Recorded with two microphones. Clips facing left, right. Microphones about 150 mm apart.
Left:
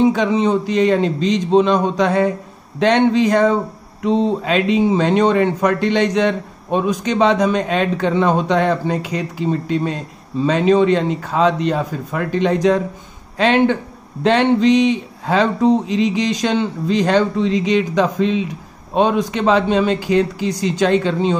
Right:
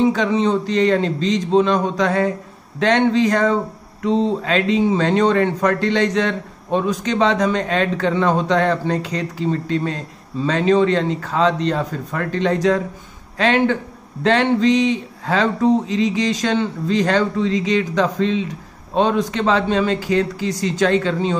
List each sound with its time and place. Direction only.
0.0 s speech: 15° left (ahead or behind)